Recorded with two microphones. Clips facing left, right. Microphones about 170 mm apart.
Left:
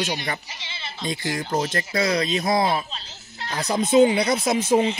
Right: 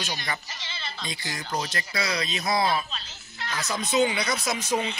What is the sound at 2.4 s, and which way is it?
Speech, 25° left (ahead or behind).